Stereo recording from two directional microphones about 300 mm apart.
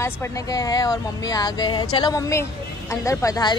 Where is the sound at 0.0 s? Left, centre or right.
Centre.